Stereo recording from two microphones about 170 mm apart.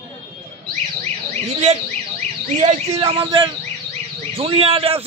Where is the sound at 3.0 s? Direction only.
30° right (ahead or behind).